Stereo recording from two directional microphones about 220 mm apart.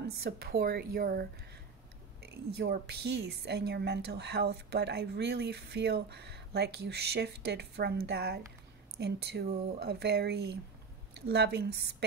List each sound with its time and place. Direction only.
0.0 s a woman's voice: 45° right (ahead or behind)
2.5 s a woman's voice: 50° right (ahead or behind)